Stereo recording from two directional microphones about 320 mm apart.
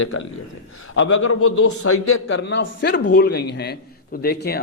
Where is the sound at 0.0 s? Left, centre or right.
Left.